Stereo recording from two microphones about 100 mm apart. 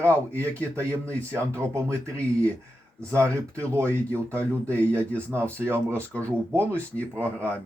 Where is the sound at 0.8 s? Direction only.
30° right (ahead or behind).